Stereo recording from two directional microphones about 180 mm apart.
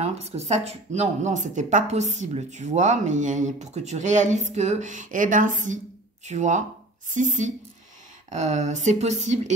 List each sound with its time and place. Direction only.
0.0 s a woman's voice: 35° right (ahead or behind)